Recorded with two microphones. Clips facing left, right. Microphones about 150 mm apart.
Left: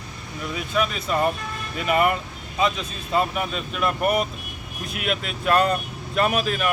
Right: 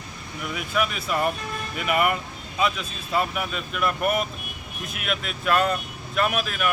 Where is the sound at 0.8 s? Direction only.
5° right (ahead or behind).